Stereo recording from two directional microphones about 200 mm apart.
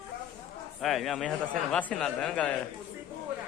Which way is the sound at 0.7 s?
Centre (ahead or behind).